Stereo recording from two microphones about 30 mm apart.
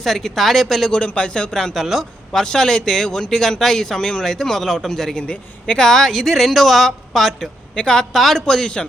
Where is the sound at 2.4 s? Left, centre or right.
Left.